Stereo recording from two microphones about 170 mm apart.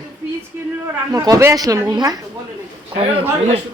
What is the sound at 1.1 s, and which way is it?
A woman's voice, 20° right (ahead or behind).